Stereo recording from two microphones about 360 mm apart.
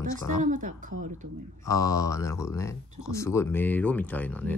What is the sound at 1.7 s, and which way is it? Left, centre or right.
Speech, centre.